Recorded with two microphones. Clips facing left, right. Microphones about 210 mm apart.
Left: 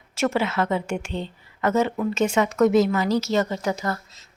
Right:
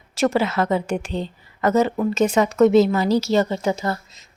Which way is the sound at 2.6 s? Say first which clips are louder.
Right 4 dB; 25° right (ahead or behind).